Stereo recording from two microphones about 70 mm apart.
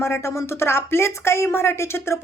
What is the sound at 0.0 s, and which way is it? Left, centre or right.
Speech, left.